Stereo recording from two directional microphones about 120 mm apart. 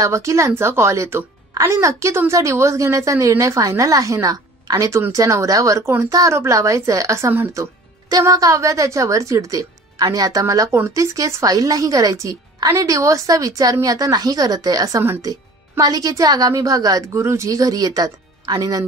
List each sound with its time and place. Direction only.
0.0 s a woman's voice: 25° right (ahead or behind)